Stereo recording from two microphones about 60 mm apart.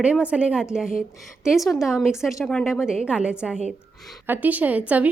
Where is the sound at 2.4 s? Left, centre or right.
Centre.